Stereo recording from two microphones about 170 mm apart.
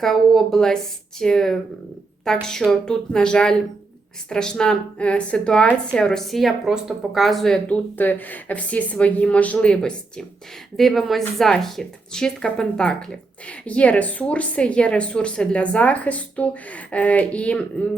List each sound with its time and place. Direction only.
0.0 s a woman's voice: centre (ahead or behind)